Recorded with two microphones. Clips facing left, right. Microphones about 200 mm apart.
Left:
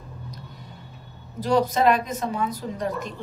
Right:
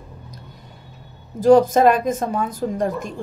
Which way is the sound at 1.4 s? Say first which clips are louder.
Right 8 dB; 45° right (ahead or behind).